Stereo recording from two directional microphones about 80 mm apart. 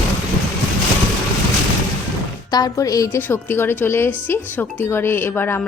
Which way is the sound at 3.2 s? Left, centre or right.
Left.